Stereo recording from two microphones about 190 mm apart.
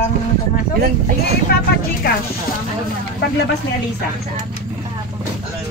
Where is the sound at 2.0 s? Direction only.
50° left (ahead or behind).